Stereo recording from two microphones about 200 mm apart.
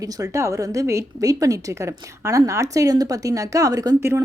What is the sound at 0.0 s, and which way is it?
A woman's voice, 15° right (ahead or behind).